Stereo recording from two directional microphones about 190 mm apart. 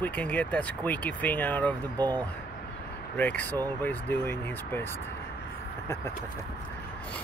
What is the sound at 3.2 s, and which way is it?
Speech, 10° left (ahead or behind).